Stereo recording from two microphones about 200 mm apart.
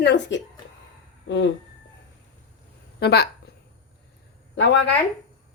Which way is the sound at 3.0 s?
55° left (ahead or behind).